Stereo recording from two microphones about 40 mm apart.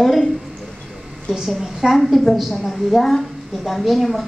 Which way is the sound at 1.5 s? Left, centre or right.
Centre.